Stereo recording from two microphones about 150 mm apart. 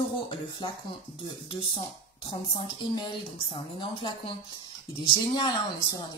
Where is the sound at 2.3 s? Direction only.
35° left (ahead or behind).